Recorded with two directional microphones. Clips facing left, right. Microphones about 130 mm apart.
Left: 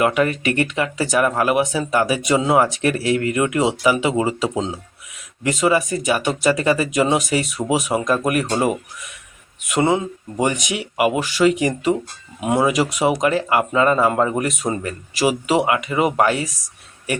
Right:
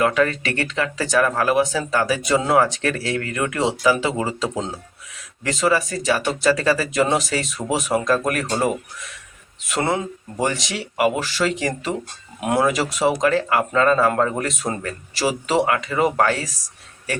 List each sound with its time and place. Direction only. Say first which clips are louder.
0.0 s speech: left 1 dB; 15° left (ahead or behind)
9.7 s speech: left 4 dB; 10° left (ahead or behind)
12.4 s speech: left 1 dB; centre (ahead or behind)
12.7 s speech: left 2 dB; 10° left (ahead or behind)